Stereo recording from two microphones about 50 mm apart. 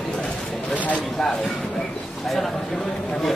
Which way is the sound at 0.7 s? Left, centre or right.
Left.